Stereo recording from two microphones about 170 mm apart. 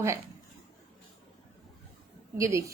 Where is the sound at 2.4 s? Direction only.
20° right (ahead or behind).